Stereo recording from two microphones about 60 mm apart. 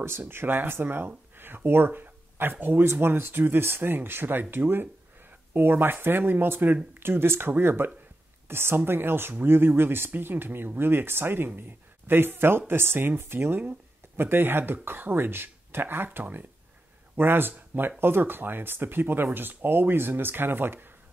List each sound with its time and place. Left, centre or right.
0.2 s speech: right